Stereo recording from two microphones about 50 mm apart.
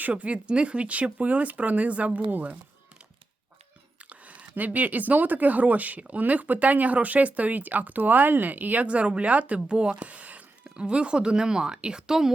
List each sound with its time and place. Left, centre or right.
0.1 s speech: right
4.1 s speech: right; by 12.3 s centre